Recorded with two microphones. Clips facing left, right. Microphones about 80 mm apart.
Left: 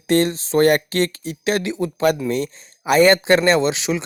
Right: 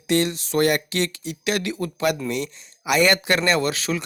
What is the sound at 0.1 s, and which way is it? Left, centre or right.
Speech, left.